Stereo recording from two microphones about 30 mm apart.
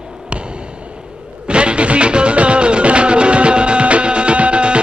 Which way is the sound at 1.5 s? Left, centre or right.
Right.